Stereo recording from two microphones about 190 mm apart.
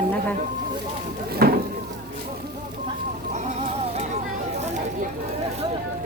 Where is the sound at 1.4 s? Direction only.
55° right (ahead or behind).